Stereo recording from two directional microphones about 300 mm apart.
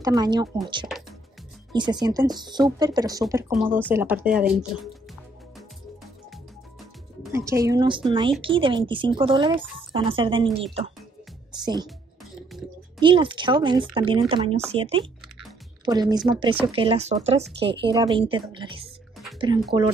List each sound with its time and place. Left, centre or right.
0.0 s speech: centre
1.7 s speech: centre
7.3 s speech: centre
11.6 s speech: centre
13.0 s speech: centre
19.3 s a sound: centre